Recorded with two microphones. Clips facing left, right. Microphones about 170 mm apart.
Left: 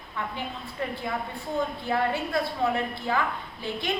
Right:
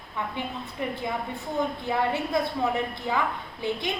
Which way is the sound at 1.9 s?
20° right (ahead or behind).